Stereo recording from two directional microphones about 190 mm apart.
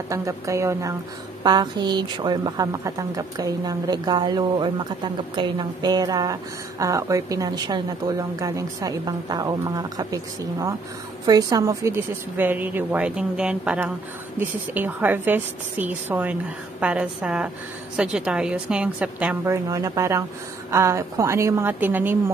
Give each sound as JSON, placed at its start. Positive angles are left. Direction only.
{"t": 0.1, "sound": "a woman's voice", "side_deg": -15}